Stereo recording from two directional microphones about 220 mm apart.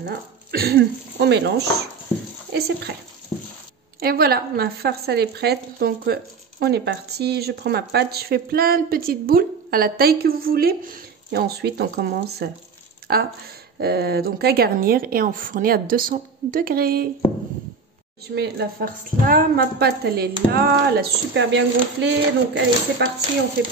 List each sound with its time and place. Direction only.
0.0 s speech: 45° right (ahead or behind)
2.5 s speech: 50° right (ahead or behind)
4.0 s speech: 45° right (ahead or behind)
18.3 s speech: 50° right (ahead or behind)